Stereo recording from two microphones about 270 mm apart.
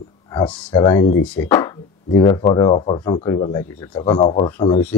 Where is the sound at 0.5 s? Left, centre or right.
Centre.